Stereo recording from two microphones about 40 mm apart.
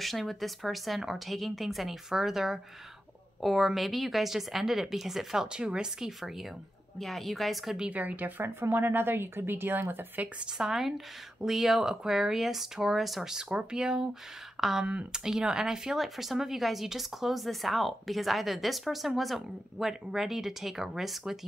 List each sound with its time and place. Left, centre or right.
0.0 s speech: centre
7.0 s speech: centre
7.9 s speech: right
8.5 s speech: right
10.6 s speech: centre